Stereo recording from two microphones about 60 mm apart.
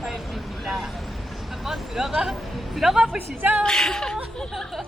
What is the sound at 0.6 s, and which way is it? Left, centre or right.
Vehicle, centre.